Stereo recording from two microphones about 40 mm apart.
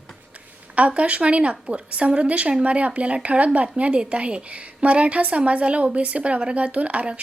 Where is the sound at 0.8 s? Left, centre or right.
Right.